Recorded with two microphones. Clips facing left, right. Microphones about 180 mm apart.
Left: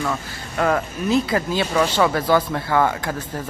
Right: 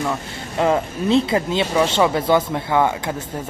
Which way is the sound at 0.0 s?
20° right (ahead or behind).